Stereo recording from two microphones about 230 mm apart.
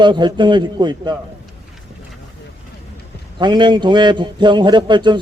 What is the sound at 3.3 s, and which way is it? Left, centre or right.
A man's voice, centre.